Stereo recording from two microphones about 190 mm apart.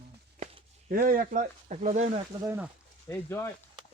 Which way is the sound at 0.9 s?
50° right (ahead or behind).